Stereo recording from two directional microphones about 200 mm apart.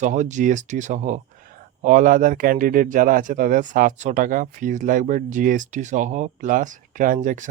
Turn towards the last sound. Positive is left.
turn(degrees=-40)  # may be behind; listen again after turning